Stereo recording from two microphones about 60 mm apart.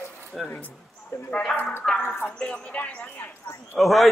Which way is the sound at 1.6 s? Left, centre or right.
Left.